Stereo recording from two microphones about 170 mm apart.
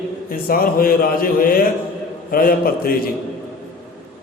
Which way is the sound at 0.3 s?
60° left (ahead or behind).